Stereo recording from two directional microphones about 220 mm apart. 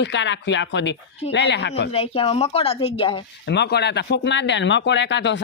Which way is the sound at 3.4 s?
50° left (ahead or behind).